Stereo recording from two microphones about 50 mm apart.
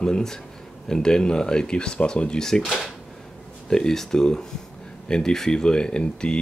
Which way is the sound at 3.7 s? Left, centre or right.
Centre.